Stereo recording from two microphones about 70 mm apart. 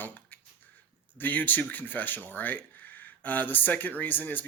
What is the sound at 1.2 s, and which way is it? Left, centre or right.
Speech, left.